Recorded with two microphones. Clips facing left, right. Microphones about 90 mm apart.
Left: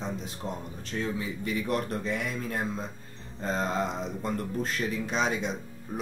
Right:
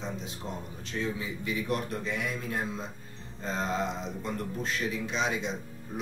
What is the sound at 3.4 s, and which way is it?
Speech, 45° left (ahead or behind).